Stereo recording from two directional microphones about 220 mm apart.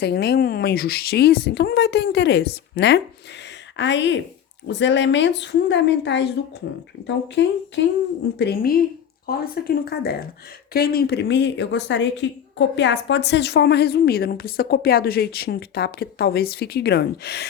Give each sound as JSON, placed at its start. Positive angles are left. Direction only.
{"t": 0.0, "sound": "a woman's voice", "side_deg": 45}
{"t": 7.4, "sound": "a woman's voice", "side_deg": 50}